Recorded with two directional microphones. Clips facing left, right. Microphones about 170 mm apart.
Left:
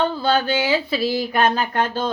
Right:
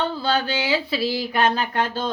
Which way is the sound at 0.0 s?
50° left (ahead or behind).